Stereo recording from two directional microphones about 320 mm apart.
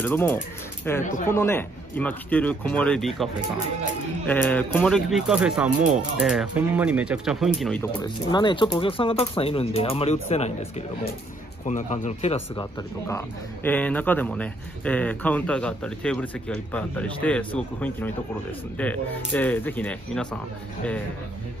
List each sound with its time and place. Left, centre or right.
0.0 s speech: centre
4.3 s speech: centre
11.6 s speech: left
13.1 s speech: centre